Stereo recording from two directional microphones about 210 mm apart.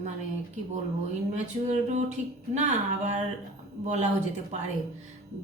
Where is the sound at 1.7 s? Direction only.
35° right (ahead or behind).